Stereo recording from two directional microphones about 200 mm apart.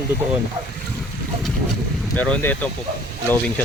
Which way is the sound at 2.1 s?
5° left (ahead or behind).